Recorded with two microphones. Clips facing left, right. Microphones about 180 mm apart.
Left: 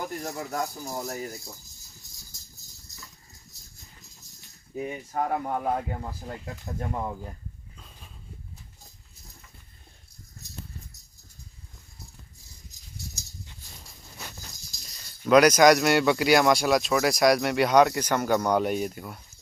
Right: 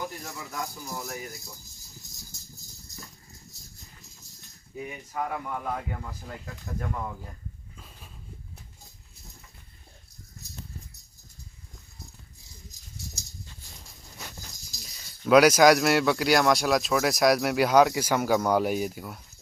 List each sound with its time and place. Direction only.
0.2 s speech: 45° left (ahead or behind)
4.8 s speech: 40° left (ahead or behind)
14.8 s speech: centre (ahead or behind)